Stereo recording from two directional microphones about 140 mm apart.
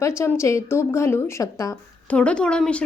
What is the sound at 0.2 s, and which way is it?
A woman's voice, 20° left (ahead or behind).